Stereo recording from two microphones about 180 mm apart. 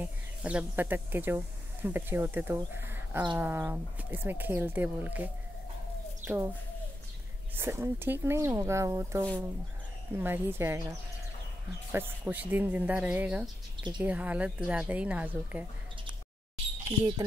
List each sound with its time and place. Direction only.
0.0 s speech: 5° right (ahead or behind)
7.5 s speech: 15° right (ahead or behind)
11.9 s speech: 10° right (ahead or behind)